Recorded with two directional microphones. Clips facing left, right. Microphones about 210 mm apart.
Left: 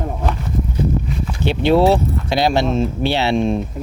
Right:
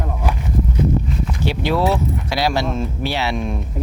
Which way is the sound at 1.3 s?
25° left (ahead or behind).